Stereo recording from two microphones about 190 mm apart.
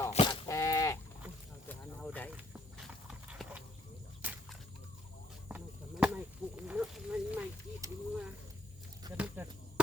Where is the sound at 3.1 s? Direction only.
5° right (ahead or behind).